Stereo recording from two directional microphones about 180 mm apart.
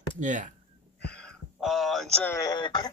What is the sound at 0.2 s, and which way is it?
Speech, 45° right (ahead or behind).